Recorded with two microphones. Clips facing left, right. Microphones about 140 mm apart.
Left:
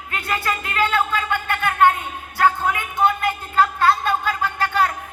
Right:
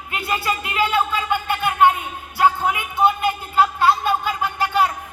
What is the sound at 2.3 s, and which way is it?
Music, 20° right (ahead or behind).